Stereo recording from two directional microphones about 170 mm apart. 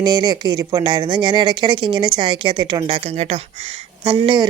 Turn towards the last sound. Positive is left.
turn(degrees=-30)  # may be behind; listen again after turning